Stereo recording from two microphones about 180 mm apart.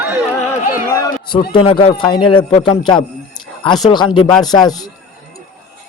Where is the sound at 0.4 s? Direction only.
15° left (ahead or behind).